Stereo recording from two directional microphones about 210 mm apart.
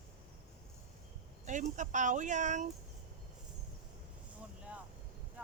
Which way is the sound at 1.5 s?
35° right (ahead or behind).